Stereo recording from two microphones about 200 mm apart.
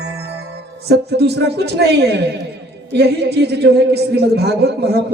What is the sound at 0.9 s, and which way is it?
A man's voice, 55° right (ahead or behind).